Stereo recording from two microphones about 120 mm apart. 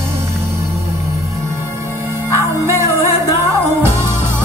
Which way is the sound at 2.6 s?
25° right (ahead or behind).